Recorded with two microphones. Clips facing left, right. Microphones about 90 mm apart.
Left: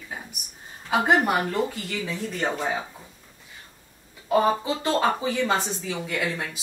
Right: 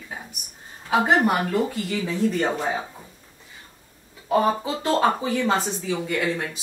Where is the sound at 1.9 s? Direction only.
25° right (ahead or behind).